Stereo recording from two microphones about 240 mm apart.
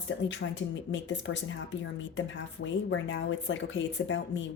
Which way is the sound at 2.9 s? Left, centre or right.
Left.